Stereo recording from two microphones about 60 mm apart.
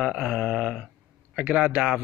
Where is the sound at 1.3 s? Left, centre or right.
Centre.